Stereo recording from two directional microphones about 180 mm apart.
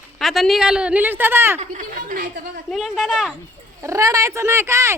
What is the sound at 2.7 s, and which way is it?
Speech, centre (ahead or behind).